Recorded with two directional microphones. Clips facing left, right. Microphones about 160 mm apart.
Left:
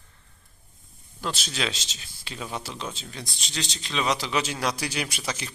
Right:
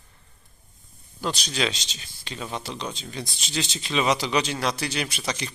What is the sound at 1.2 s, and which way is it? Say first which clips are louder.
Speech: right 3 dB; centre (ahead or behind).